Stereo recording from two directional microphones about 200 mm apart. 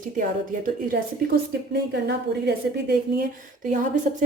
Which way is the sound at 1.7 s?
55° right (ahead or behind).